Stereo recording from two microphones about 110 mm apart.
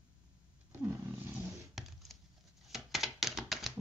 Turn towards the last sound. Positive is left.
turn(degrees=0)  # may be behind; listen again after turning